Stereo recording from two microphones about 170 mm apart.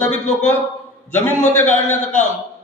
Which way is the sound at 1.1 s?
10° left (ahead or behind).